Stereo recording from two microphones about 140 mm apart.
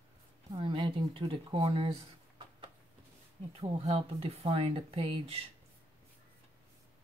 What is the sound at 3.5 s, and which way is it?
Speech, 45° right (ahead or behind).